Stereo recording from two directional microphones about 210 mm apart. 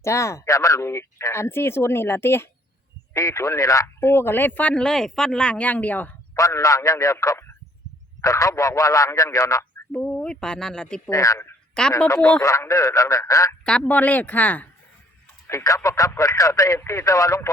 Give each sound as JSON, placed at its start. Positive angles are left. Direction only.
{"t": 0.0, "sound": "speech", "side_deg": 15}
{"t": 11.1, "sound": "speech", "side_deg": 15}